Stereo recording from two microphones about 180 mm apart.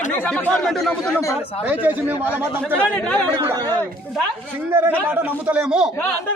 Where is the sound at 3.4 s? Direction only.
20° right (ahead or behind).